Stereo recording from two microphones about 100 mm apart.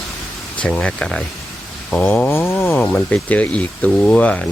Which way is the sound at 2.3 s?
25° left (ahead or behind).